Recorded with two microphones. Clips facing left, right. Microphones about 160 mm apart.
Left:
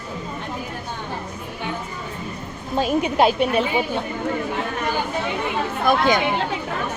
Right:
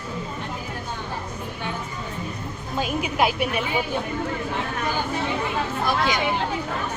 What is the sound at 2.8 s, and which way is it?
Speech, 35° left (ahead or behind).